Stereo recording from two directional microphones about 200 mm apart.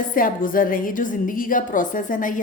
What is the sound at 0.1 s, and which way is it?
A woman's voice, 45° left (ahead or behind).